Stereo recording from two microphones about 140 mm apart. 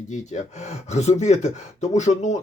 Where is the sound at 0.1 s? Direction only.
55° left (ahead or behind).